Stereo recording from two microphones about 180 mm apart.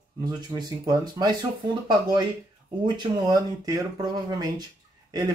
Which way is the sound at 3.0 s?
20° right (ahead or behind).